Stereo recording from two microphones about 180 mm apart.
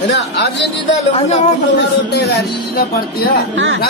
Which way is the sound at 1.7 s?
65° left (ahead or behind).